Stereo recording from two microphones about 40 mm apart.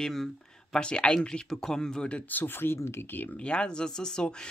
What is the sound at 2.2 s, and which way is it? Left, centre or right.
Speech, left.